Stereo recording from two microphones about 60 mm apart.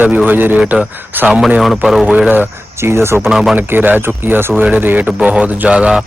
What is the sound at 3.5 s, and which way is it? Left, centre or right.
Speech, right.